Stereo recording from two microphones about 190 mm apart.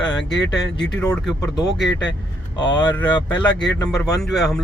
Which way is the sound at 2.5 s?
25° left (ahead or behind).